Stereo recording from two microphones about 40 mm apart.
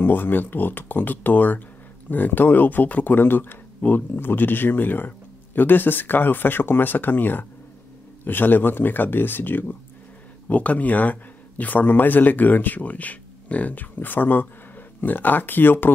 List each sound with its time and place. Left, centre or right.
0.0 s a man's voice: left
10.5 s a man's voice: left